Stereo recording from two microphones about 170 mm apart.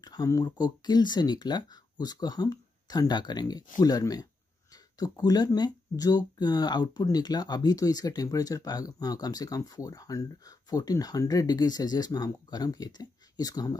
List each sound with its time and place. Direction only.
0.0 s speech: 25° left (ahead or behind)